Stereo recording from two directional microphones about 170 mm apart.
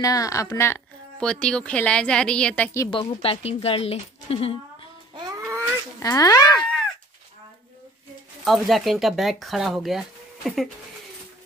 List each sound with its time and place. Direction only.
0.0 s a woman's voice: 20° left (ahead or behind)
2.9 s a woman's voice: 35° left (ahead or behind)
5.1 s baby cry: 20° right (ahead or behind)
5.9 s speech: 20° left (ahead or behind)
8.5 s speech: centre (ahead or behind)